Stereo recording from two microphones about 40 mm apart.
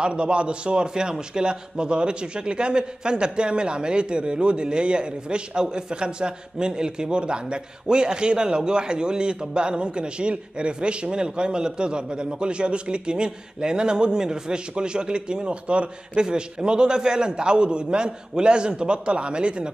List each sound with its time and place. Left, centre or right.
0.0 s a man's voice: right